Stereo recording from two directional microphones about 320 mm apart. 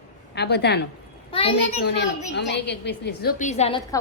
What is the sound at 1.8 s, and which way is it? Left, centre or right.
A woman's voice, left.